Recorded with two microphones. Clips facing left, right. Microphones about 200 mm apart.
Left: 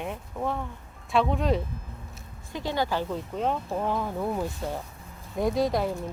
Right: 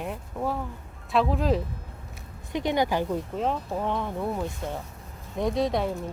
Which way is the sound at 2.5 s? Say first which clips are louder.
Right 3 dB; 20° right (ahead or behind).